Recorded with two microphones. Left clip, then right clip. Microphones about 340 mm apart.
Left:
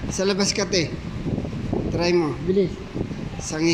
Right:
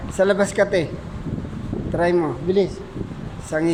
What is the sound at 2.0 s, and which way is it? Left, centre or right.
Speech, centre.